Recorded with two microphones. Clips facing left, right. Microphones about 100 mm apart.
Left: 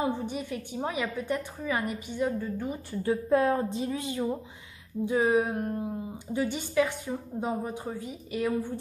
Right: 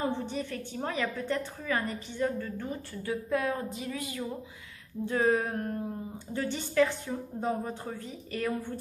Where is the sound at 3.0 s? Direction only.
30° left (ahead or behind).